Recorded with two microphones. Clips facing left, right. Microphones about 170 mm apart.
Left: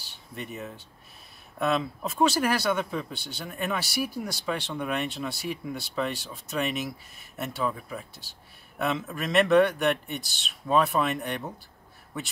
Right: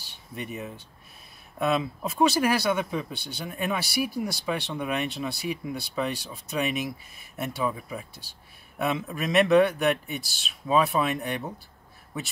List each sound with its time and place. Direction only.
0.4 s a man's voice: centre (ahead or behind)